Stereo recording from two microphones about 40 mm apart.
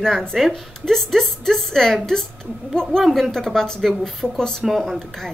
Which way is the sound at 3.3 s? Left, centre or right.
Centre.